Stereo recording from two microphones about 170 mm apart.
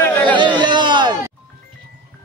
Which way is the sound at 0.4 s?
25° right (ahead or behind).